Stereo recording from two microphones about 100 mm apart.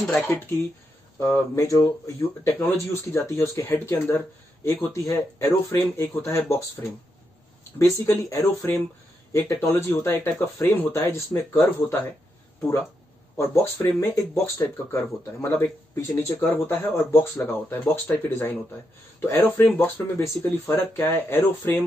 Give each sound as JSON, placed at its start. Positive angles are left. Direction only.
{"t": 0.0, "sound": "speech", "side_deg": 5}
{"t": 1.2, "sound": "speech", "side_deg": 30}
{"t": 4.9, "sound": "speech", "side_deg": 30}
{"t": 13.4, "sound": "speech", "side_deg": 30}